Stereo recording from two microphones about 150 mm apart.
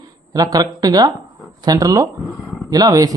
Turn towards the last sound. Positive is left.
turn(degrees=-25)  # may be behind; listen again after turning